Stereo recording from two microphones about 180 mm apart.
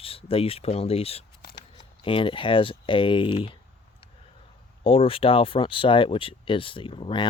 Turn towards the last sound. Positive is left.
turn(degrees=30)  # may be behind; listen again after turning